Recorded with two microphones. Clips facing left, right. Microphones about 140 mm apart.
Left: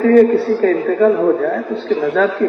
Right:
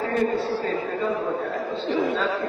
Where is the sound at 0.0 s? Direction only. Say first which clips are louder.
Left 13 dB; 60° left (ahead or behind).